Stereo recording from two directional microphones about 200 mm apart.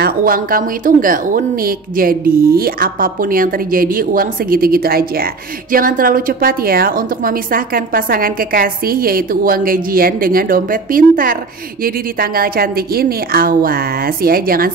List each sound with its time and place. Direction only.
0.0 s speech: 45° right (ahead or behind)